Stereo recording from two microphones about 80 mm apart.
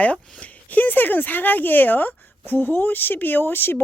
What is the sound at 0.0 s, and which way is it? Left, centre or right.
Speech, centre.